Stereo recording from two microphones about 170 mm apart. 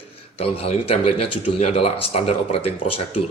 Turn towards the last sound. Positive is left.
turn(degrees=35)  # may be behind; listen again after turning